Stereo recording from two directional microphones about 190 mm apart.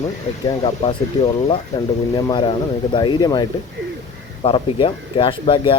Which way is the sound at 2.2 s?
25° left (ahead or behind).